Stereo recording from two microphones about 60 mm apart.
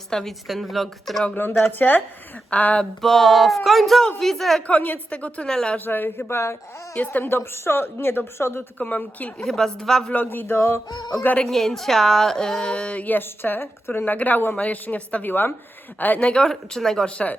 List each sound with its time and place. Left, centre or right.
0.1 s a sound: centre
1.4 s a woman's voice: left
2.5 s a woman's voice: left
3.0 s a sound: centre
4.6 s a woman's voice: left
5.7 s a woman's voice: left
6.9 s a woman's voice: left
8.8 s a woman's voice: left
9.4 s speech: centre
10.2 s a woman's voice: left
11.4 s a woman's voice: centre; by 15.3 s left
15.3 s a woman's voice: left
16.2 s speech: centre